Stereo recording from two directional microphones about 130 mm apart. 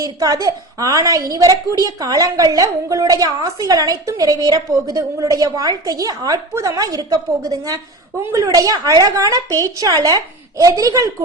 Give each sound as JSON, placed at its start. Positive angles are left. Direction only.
{"t": 0.0, "sound": "a woman's voice", "side_deg": -30}